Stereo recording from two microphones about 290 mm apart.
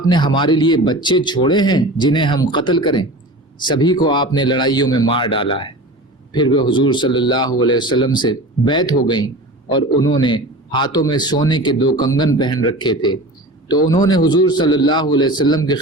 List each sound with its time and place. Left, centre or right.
0.0 s speech: centre